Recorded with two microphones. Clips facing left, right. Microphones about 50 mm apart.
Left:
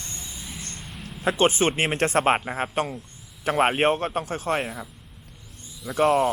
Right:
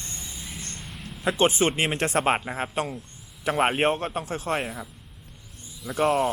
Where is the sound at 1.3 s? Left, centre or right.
Left.